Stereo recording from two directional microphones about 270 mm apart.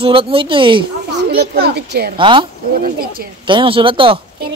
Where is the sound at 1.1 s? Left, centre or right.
Right.